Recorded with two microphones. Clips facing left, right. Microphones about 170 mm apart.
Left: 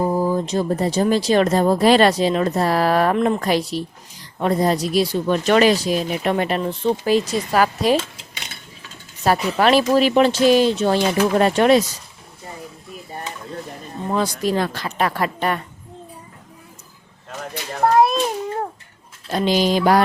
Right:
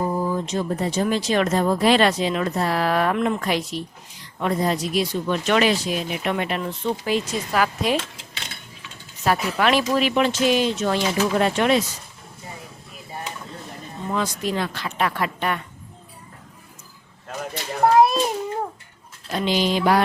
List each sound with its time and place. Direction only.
0.0 s speech: 35° left (ahead or behind)
9.2 s speech: 35° left (ahead or behind)
14.1 s speech: 35° left (ahead or behind)
17.2 s a child's voice: centre (ahead or behind)
19.3 s speech: 40° left (ahead or behind)